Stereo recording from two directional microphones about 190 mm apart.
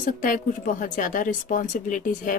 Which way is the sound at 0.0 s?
45° left (ahead or behind).